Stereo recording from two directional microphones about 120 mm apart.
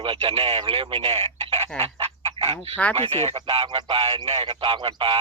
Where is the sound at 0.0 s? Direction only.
45° right (ahead or behind).